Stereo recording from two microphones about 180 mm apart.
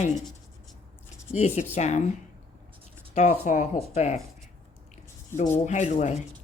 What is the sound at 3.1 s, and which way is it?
Speech, 40° left (ahead or behind).